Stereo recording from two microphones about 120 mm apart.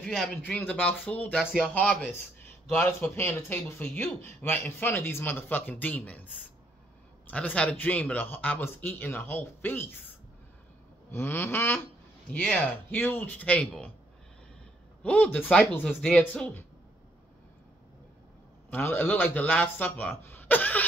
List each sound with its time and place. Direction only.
0.0 s speech: 5° left (ahead or behind)
7.2 s speech: 10° left (ahead or behind)
15.0 s speech: 10° left (ahead or behind)
18.7 s speech: 15° left (ahead or behind)